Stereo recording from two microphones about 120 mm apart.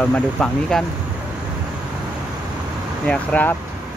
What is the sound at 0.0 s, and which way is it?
Speech, 10° left (ahead or behind).